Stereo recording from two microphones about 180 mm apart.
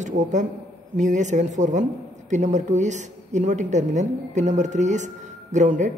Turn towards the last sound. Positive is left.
turn(degrees=-45)  # may be behind; listen again after turning